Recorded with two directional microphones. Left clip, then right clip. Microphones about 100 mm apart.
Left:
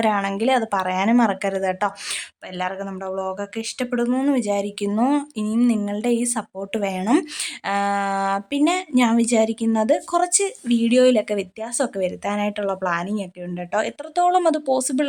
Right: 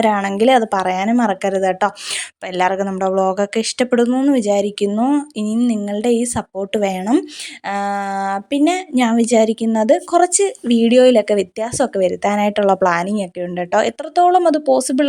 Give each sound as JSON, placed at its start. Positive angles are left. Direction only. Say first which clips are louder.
{"t": 0.0, "sound": "a woman's voice", "louder": "right 6 dB", "side_deg": -45}
{"t": 2.6, "sound": "speech", "louder": "right 10 dB", "side_deg": -70}
{"t": 4.1, "sound": "speech", "louder": "right 5 dB", "side_deg": -25}
{"t": 4.4, "sound": "a woman's voice", "louder": "right 7 dB", "side_deg": -35}
{"t": 4.9, "sound": "speech", "louder": "right 3 dB", "side_deg": -15}
{"t": 5.6, "sound": "a woman's voice", "louder": "right 5 dB", "side_deg": -30}
{"t": 14.3, "sound": "speech", "louder": "right 4 dB", "side_deg": -25}